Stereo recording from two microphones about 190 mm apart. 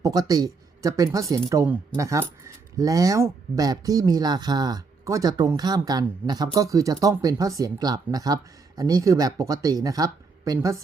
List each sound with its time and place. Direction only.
0.0 s speech: 20° right (ahead or behind)